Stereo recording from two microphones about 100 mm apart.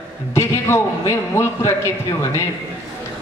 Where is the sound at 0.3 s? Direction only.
25° left (ahead or behind).